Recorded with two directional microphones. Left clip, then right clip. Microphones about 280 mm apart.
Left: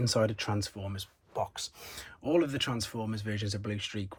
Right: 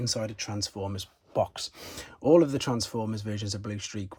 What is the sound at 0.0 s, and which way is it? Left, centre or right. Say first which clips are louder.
Speech: left 3 dB; centre.